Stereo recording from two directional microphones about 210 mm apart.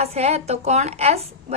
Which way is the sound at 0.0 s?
30° right (ahead or behind).